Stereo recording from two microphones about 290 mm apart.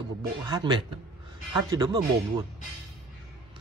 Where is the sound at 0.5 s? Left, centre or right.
Centre.